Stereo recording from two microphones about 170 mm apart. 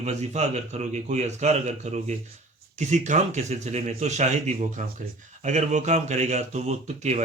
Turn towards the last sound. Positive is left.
turn(degrees=-40)  # may be behind; listen again after turning